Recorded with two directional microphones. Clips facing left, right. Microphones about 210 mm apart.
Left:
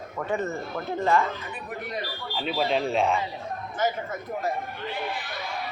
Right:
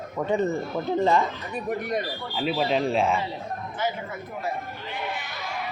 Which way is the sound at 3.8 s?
45° left (ahead or behind).